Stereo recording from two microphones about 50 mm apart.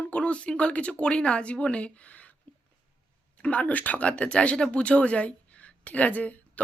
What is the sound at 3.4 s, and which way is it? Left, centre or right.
Speech, left.